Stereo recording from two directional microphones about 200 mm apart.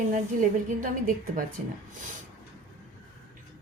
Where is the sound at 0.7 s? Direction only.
40° right (ahead or behind).